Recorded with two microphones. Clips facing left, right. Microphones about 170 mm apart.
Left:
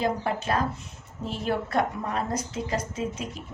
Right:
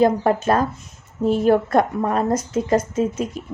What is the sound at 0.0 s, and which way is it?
A woman's voice, 45° right (ahead or behind).